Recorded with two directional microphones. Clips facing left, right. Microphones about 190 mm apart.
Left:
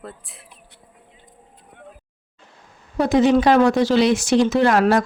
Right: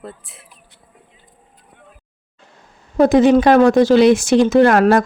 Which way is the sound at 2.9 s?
50° right (ahead or behind).